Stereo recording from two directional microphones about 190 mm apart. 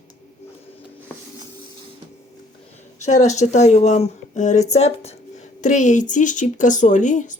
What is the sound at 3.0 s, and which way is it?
Speech, 40° left (ahead or behind).